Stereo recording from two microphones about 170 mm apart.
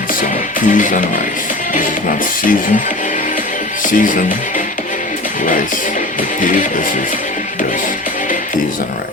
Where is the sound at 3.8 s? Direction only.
50° left (ahead or behind).